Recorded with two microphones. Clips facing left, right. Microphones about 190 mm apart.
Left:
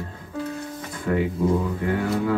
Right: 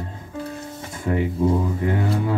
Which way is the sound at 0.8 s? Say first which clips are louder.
Right 1 dB; 25° right (ahead or behind).